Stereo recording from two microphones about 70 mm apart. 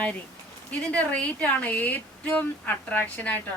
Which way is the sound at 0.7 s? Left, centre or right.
Centre.